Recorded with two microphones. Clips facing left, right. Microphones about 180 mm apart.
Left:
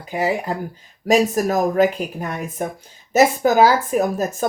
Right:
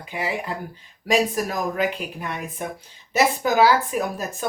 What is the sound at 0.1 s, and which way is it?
Speech, 40° left (ahead or behind).